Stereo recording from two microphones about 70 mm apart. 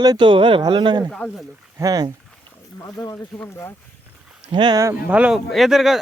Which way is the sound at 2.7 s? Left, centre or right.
Left.